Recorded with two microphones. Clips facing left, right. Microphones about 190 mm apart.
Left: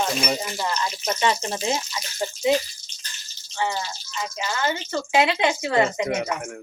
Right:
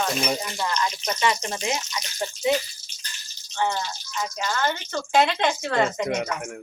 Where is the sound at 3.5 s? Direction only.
5° left (ahead or behind).